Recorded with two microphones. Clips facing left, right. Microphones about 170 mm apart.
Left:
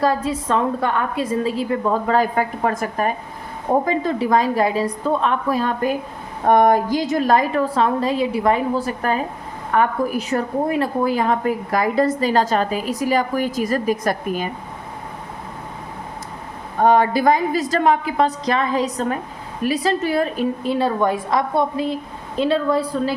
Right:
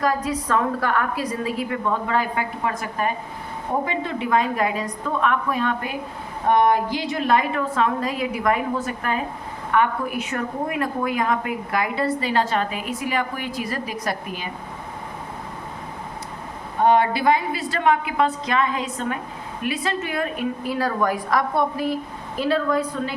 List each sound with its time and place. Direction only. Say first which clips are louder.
0.0 s a woman's voice: left 3 dB; 30° left (ahead or behind); by 14.5 s 50° left (ahead or behind)
16.8 s a woman's voice: left 3 dB; 45° left (ahead or behind)